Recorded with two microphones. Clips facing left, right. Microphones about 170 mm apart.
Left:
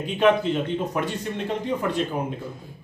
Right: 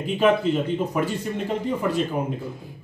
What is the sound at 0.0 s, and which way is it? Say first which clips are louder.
Speech: even; 5° right (ahead or behind).